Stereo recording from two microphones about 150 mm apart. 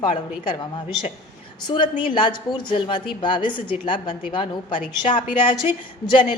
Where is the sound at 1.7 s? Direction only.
30° left (ahead or behind).